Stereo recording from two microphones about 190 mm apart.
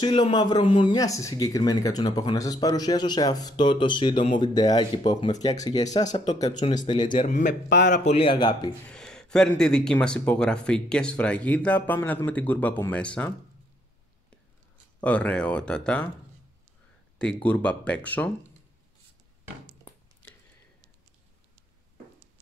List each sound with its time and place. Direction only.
0.0 s speech: 25° left (ahead or behind)
7.2 s a man's voice: 40° left (ahead or behind); by 8.6 s 25° left (ahead or behind)
8.8 s speech: 5° left (ahead or behind)
15.0 s speech: 5° left (ahead or behind)
17.2 s speech: 5° left (ahead or behind)